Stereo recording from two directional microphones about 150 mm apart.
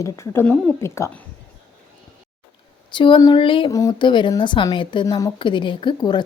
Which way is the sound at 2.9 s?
30° left (ahead or behind).